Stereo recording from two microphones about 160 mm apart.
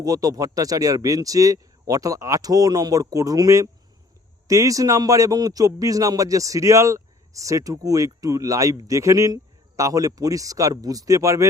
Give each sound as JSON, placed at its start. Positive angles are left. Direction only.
{"t": 0.0, "sound": "a man's voice", "side_deg": -20}